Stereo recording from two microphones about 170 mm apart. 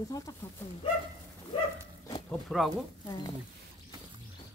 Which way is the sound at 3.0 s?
25° left (ahead or behind).